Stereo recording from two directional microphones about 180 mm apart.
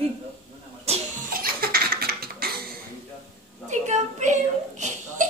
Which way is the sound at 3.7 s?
40° right (ahead or behind).